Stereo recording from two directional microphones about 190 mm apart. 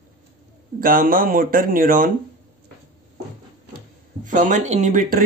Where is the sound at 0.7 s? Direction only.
50° right (ahead or behind).